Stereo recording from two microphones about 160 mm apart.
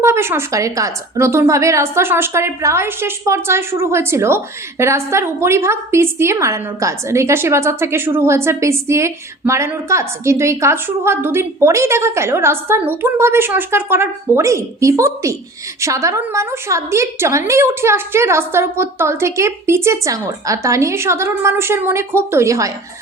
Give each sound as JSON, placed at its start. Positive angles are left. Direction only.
{"t": 0.0, "sound": "a woman's voice", "side_deg": -15}